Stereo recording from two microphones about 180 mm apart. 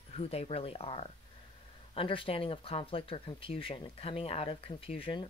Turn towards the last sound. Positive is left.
turn(degrees=30)  # may be behind; listen again after turning